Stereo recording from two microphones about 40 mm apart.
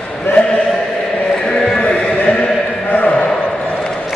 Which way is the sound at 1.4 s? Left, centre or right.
Centre.